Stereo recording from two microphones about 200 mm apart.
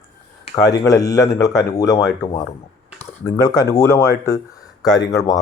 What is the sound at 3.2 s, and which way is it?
Speech, 15° left (ahead or behind).